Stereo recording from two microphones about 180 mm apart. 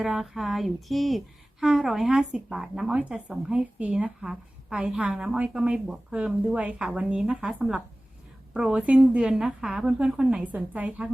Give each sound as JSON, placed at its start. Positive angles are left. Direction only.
{"t": 0.0, "sound": "speech", "side_deg": 0}